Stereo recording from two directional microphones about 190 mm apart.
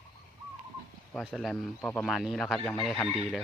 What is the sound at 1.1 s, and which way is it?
Speech, centre (ahead or behind).